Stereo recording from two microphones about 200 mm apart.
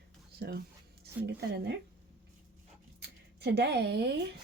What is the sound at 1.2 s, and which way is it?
Speech, 55° right (ahead or behind).